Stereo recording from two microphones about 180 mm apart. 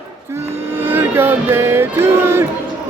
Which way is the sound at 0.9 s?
10° right (ahead or behind).